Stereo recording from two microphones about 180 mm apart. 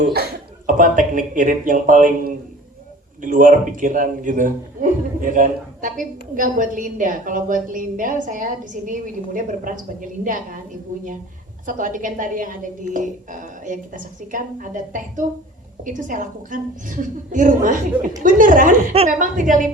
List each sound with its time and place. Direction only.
0.7 s a man's voice: 45° right (ahead or behind)
11.6 s a man's voice: 45° right (ahead or behind)